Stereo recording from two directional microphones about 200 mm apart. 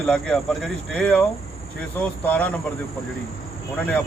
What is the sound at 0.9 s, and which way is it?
Speech, 5° left (ahead or behind).